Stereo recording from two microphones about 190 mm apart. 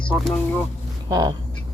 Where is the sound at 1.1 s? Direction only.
20° right (ahead or behind).